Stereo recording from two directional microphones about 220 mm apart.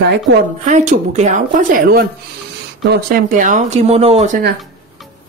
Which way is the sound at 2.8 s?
45° right (ahead or behind).